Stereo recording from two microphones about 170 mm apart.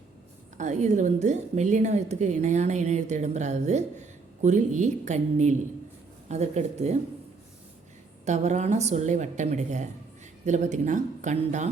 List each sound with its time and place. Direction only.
0.5 s a woman's voice: 45° right (ahead or behind)
8.2 s a woman's voice: 45° right (ahead or behind)